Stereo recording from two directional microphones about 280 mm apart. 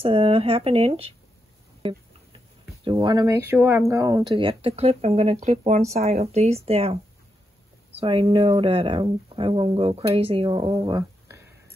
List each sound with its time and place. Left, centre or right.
0.0 s speech: centre
2.8 s speech: centre